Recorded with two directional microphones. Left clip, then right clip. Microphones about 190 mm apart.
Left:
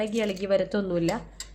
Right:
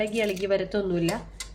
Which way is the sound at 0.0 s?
55° left (ahead or behind).